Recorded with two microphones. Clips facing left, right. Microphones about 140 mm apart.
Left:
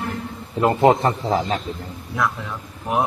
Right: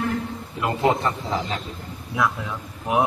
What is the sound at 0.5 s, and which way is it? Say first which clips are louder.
A man's voice: left 6 dB; 40° left (ahead or behind).